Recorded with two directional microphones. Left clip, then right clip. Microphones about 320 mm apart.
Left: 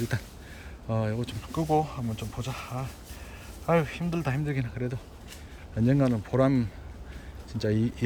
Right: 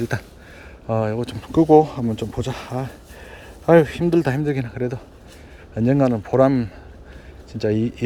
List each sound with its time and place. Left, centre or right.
0.1 s speech: centre